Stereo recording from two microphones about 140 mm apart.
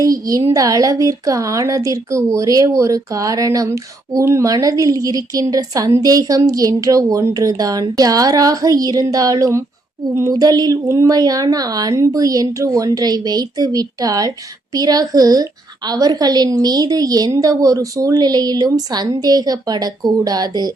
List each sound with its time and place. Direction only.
0.0 s a woman's voice: 25° right (ahead or behind)